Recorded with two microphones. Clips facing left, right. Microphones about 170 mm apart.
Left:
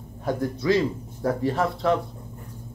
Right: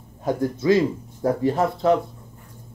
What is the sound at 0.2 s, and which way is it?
A man's voice, 20° right (ahead or behind).